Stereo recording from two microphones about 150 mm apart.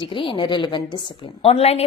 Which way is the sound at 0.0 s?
35° left (ahead or behind).